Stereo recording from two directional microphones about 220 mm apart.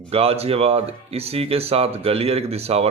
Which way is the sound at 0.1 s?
25° right (ahead or behind).